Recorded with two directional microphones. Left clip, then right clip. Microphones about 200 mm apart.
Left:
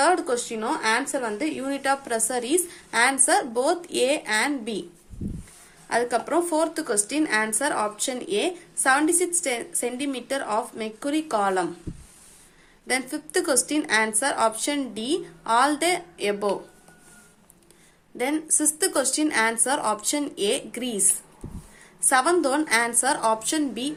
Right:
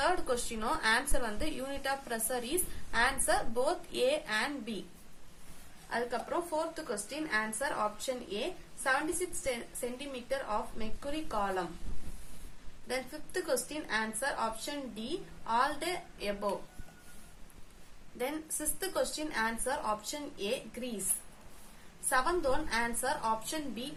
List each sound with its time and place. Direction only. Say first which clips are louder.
0.0 s a woman's voice: left 10 dB; 20° left (ahead or behind)
5.9 s speech: left 11 dB; 35° left (ahead or behind)
10.1 s speech: left 8 dB; 35° left (ahead or behind)
12.9 s speech: left 11 dB; 35° left (ahead or behind)
18.2 s speech: left 12 dB; 25° left (ahead or behind)
22.1 s speech: left 10 dB; 35° left (ahead or behind)